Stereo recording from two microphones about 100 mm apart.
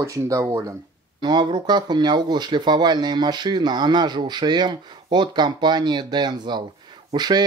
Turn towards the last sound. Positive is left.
turn(degrees=-45)  # may be behind; listen again after turning